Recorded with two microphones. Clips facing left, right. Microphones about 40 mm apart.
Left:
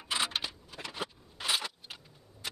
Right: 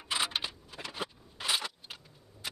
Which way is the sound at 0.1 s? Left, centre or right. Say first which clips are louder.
Even; centre.